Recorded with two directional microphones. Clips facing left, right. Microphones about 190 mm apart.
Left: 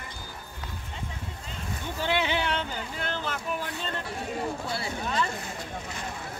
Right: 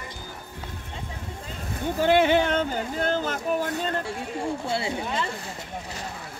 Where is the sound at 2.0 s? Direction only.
50° right (ahead or behind).